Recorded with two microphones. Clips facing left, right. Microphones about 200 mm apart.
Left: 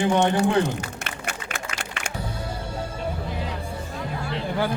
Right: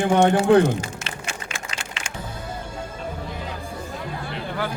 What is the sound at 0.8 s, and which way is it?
Music, 60° left (ahead or behind).